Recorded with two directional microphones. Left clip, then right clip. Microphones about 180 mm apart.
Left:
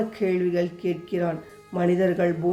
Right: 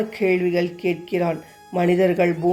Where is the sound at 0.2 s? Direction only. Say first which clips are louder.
Right 4 dB; 15° right (ahead or behind).